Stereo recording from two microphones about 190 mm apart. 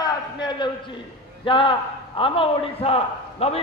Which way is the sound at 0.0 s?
25° left (ahead or behind).